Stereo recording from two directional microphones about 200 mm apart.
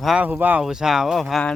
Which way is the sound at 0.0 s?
5° right (ahead or behind).